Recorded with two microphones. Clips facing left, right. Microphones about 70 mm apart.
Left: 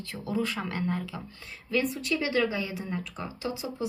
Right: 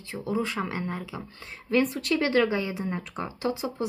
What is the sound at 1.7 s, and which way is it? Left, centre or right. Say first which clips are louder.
Speech: right 4 dB; right.